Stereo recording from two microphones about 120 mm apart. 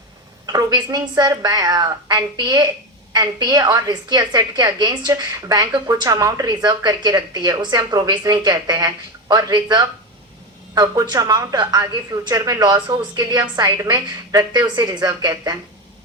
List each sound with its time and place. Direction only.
0.4 s a woman's voice: 35° right (ahead or behind)